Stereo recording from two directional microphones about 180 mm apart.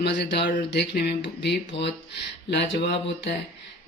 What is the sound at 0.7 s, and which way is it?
Speech, 65° left (ahead or behind).